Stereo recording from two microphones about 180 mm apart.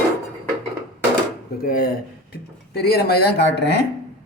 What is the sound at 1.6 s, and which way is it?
Speech, 50° left (ahead or behind).